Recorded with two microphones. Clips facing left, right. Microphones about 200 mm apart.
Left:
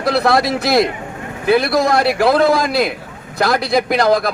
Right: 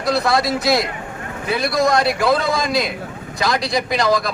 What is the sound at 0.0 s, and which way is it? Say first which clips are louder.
A man's voice: left 3 dB; 60° left (ahead or behind).